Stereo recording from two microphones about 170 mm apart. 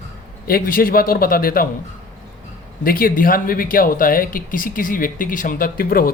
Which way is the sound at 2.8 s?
55° left (ahead or behind).